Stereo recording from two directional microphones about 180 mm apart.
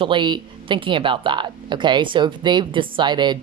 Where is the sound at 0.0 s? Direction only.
25° right (ahead or behind).